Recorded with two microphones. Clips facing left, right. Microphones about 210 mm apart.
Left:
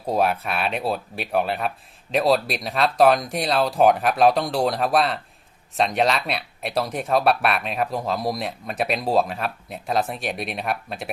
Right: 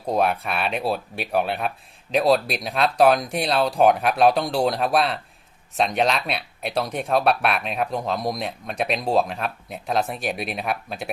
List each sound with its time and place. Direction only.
0.1 s speech: centre (ahead or behind)